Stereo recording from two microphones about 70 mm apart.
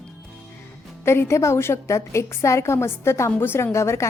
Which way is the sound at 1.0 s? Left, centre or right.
Left.